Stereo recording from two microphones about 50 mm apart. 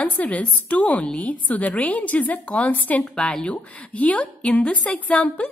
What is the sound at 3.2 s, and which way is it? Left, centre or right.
Speech, centre.